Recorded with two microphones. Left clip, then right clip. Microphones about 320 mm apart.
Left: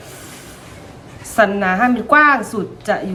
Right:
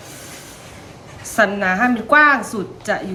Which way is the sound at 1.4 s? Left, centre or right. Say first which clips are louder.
Left 2 dB; centre.